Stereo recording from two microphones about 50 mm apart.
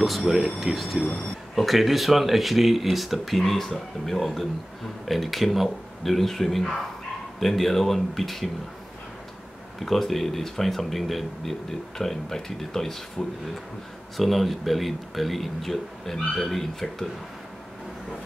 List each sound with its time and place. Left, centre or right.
0.6 s speech: centre
9.8 s speech: centre
14.1 s speech: centre